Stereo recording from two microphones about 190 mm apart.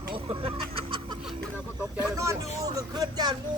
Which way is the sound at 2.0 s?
15° right (ahead or behind).